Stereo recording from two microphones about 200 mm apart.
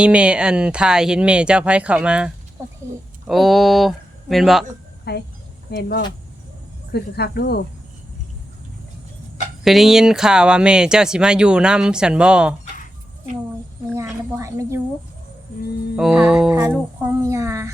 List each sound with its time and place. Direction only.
0.0 s speech: 5° right (ahead or behind)
5.1 s a woman's voice: 55° left (ahead or behind)
6.9 s speech: 55° left (ahead or behind)
9.6 s speech: centre (ahead or behind)
13.9 s a sound: 15° right (ahead or behind)
16.0 s a sound: 5° right (ahead or behind)